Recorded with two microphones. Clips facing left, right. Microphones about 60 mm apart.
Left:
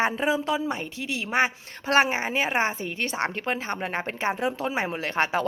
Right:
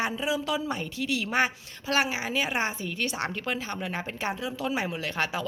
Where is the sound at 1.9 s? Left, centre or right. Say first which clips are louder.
Left 5 dB; left.